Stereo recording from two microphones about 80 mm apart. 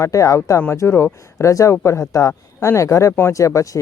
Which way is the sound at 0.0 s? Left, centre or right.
Left.